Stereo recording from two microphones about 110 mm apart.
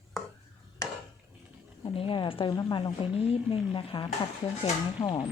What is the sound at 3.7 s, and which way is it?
Speech, 50° left (ahead or behind).